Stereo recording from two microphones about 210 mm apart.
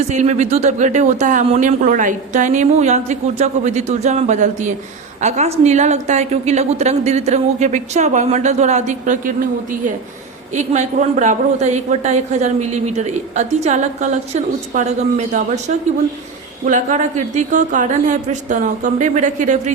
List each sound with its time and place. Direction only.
0.1 s a woman's voice: 35° right (ahead or behind)